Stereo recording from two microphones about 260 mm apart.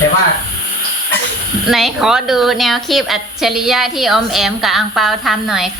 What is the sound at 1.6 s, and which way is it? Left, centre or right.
A woman's voice, centre.